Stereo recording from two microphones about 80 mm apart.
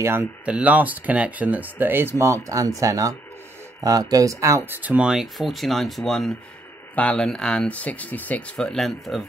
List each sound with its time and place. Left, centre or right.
0.5 s speech: centre; by 4.6 s right
4.6 s speech: right
5.0 s speech: centre
8.5 s speech: centre